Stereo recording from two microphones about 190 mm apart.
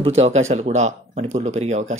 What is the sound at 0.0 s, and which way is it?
Speech, 35° right (ahead or behind).